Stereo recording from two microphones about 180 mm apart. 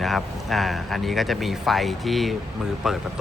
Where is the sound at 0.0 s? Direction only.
Centre (ahead or behind).